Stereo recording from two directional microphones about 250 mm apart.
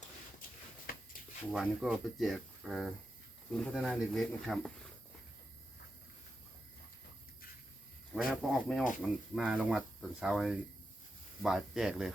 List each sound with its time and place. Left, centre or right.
1.5 s speech: centre
8.1 s speech: centre